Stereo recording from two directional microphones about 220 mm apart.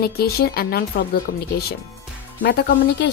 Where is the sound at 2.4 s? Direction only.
50° left (ahead or behind).